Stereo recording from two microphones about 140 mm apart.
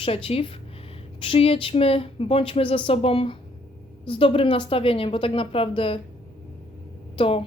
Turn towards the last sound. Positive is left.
turn(degrees=40)  # may be behind; listen again after turning